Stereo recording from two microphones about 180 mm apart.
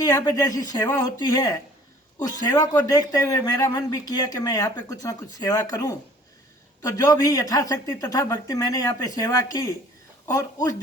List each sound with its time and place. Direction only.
0.0 s a man's voice: 20° left (ahead or behind)